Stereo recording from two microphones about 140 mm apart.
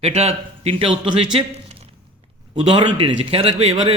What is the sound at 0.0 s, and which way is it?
Speech, 50° right (ahead or behind).